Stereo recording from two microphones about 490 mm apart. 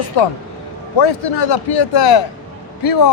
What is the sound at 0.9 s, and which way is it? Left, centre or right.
Speech, left.